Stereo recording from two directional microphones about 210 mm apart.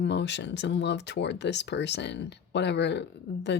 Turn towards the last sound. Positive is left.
turn(degrees=55)  # may be behind; listen again after turning